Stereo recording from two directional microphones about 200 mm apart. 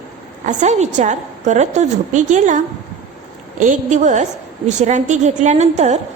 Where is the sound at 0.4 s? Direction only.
35° right (ahead or behind).